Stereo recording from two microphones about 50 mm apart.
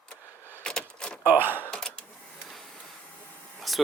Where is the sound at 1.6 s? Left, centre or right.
Centre.